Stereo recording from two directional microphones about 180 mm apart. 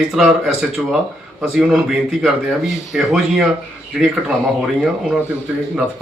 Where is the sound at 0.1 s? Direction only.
Centre (ahead or behind).